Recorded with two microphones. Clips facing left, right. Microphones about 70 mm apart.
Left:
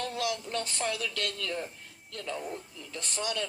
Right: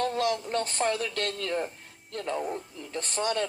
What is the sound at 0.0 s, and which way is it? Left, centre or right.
Speech, right.